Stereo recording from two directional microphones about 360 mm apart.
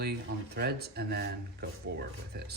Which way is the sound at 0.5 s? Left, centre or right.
Right.